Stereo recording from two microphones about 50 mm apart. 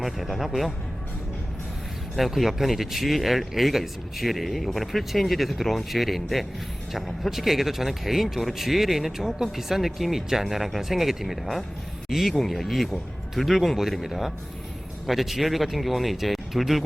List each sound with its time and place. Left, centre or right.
0.0 s speech: centre
2.1 s speech: centre